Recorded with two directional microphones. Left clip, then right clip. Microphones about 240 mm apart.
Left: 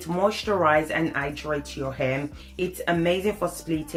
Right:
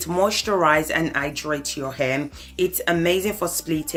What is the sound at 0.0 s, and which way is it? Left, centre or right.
Speech, right.